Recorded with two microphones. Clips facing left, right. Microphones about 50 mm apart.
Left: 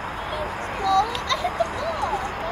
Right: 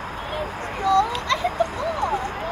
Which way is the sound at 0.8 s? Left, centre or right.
Right.